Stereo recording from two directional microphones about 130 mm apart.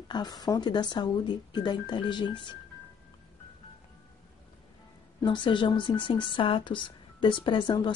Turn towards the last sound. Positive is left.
turn(degrees=35)  # may be behind; listen again after turning